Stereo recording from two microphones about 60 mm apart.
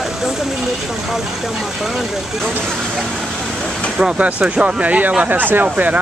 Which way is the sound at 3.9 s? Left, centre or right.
Centre.